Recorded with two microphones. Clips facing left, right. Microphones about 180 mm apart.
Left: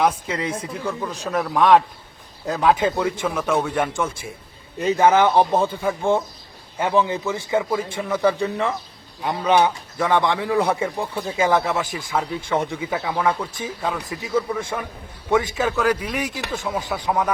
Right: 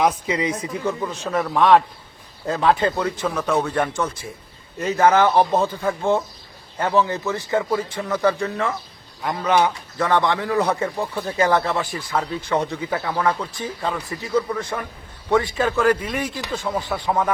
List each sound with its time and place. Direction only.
0.3 s a man's voice: 5° right (ahead or behind); by 10.8 s 15° left (ahead or behind)
11.2 s a man's voice: 5° left (ahead or behind)